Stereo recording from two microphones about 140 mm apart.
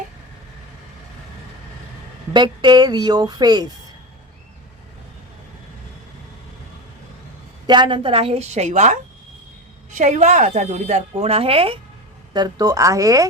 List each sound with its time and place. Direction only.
2.3 s speech: 35° right (ahead or behind)
7.7 s a woman's voice: 35° right (ahead or behind)
12.3 s speech: 30° right (ahead or behind)